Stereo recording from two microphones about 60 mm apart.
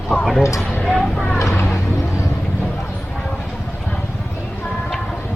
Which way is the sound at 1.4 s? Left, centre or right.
Left.